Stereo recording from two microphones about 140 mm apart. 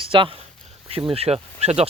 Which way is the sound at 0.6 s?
45° right (ahead or behind).